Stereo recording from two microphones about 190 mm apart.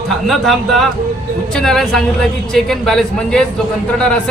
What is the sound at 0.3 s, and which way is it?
A man's voice, centre (ahead or behind).